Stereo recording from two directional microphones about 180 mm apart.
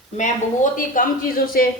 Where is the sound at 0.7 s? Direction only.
50° left (ahead or behind).